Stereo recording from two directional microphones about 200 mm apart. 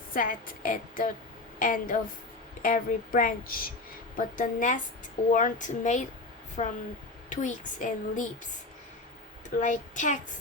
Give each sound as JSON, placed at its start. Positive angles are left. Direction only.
{"t": 0.1, "sound": "speech", "side_deg": 45}
{"t": 9.6, "sound": "speech", "side_deg": 40}